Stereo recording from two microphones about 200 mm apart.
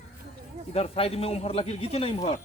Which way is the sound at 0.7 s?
30° left (ahead or behind).